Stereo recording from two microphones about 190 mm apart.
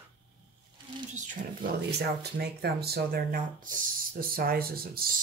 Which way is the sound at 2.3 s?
55° right (ahead or behind).